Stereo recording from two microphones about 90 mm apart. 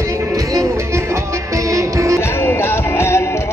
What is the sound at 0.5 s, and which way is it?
Music, 35° right (ahead or behind).